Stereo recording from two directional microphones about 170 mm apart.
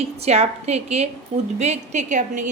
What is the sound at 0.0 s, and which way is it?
A woman's voice, 40° right (ahead or behind).